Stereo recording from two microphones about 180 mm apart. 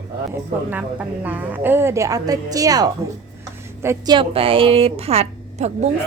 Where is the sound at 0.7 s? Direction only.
10° right (ahead or behind).